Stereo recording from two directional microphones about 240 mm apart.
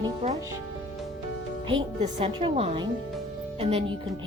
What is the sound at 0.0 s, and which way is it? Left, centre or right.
Speech, right.